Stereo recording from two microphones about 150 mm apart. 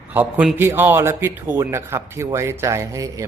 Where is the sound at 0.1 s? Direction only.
10° right (ahead or behind).